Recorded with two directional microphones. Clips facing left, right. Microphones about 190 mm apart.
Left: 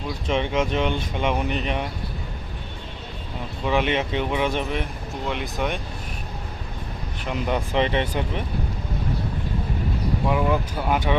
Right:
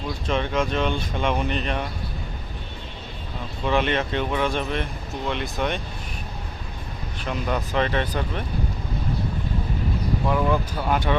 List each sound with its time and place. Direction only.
0.3 s speech: 15° left (ahead or behind)
3.7 s speech: 10° left (ahead or behind)
7.3 s speech: 20° left (ahead or behind)
10.2 s speech: 10° left (ahead or behind)